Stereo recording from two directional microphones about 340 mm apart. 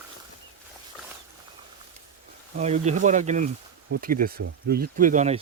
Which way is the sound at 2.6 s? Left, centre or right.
Centre.